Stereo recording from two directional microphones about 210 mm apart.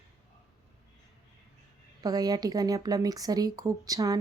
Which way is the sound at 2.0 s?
20° right (ahead or behind).